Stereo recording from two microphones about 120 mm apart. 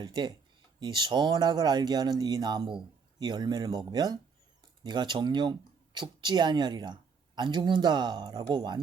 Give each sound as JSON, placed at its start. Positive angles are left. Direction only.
{"t": 0.0, "sound": "speech", "side_deg": -40}